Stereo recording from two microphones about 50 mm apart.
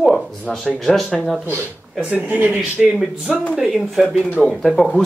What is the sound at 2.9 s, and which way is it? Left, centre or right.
Speech, centre.